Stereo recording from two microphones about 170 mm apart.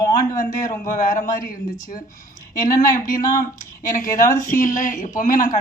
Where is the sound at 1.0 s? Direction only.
50° left (ahead or behind).